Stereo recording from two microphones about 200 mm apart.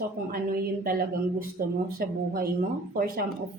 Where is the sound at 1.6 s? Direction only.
50° right (ahead or behind).